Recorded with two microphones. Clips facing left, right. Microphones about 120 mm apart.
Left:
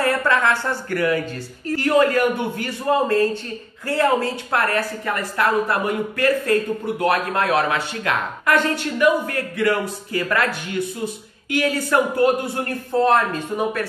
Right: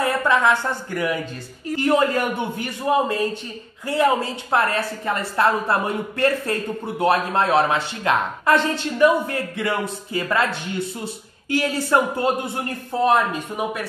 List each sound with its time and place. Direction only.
0.0 s a woman's voice: 15° right (ahead or behind)
11.5 s speech: 25° right (ahead or behind)